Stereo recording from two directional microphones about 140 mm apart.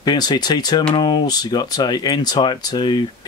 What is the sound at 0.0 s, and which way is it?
Speech, 30° left (ahead or behind).